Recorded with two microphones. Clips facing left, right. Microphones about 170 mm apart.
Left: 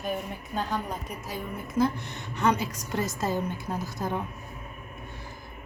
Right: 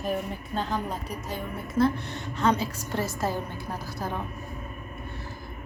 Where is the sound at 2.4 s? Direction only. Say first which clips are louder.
Right 1 dB; 10° left (ahead or behind).